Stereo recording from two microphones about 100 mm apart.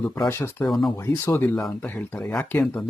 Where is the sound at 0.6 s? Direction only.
Centre (ahead or behind).